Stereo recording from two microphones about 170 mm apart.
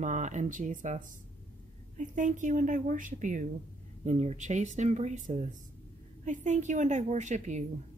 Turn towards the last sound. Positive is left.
turn(degrees=-45)  # may be behind; listen again after turning